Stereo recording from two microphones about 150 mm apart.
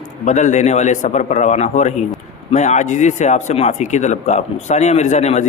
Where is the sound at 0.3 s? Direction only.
50° left (ahead or behind).